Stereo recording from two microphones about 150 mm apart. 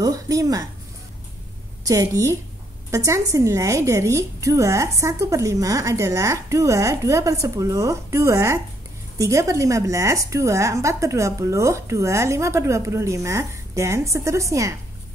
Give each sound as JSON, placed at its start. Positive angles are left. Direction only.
{"t": 0.0, "sound": "speech", "side_deg": -25}
{"t": 1.9, "sound": "a woman's voice", "side_deg": -25}